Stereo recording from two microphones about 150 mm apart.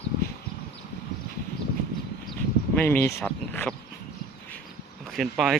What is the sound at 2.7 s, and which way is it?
Speech, 10° left (ahead or behind).